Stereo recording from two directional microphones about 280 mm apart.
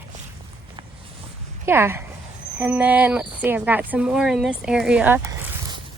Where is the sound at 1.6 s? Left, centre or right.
Centre.